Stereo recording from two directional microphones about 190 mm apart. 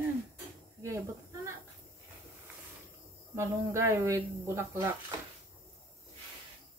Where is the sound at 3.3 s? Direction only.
15° right (ahead or behind).